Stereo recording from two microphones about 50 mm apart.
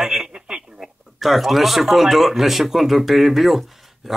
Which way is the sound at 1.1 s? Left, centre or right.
Centre.